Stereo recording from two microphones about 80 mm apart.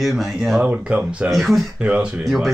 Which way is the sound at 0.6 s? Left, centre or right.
Centre.